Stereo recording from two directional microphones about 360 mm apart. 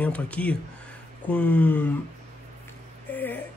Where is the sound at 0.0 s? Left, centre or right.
Centre.